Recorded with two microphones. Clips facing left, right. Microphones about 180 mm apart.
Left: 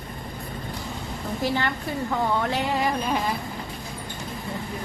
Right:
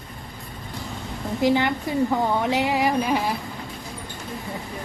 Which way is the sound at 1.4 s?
15° right (ahead or behind).